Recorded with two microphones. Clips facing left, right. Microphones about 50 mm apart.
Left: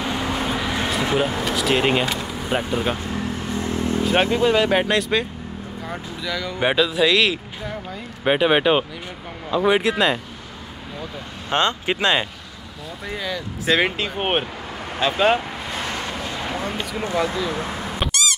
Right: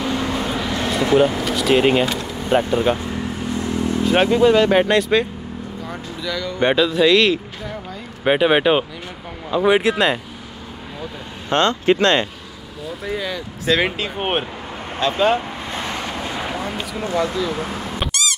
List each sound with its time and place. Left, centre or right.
0.0 s vehicle: centre
1.1 s speech: centre
3.5 s vehicle: left
4.0 s speech: centre
11.5 s speech: centre
13.0 s speech: centre
16.4 s a sound: centre
17.1 s speech: centre
17.9 s cat: centre